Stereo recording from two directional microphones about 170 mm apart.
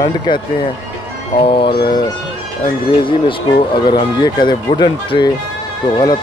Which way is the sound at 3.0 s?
30° left (ahead or behind).